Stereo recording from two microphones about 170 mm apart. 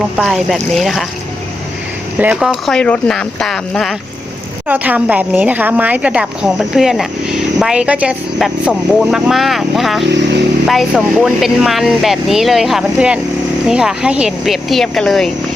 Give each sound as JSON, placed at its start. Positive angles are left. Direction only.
{"t": 0.2, "sound": "a woman's voice", "side_deg": 0}
{"t": 2.1, "sound": "a woman's voice", "side_deg": -5}
{"t": 4.7, "sound": "a woman's voice", "side_deg": -10}